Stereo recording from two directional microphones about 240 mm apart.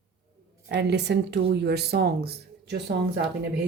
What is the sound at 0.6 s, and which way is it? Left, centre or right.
Speech, right.